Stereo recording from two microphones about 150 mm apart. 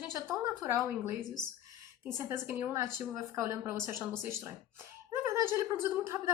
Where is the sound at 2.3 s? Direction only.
15° right (ahead or behind).